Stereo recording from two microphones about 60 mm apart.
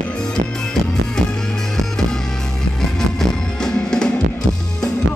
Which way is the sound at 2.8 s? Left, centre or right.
Centre.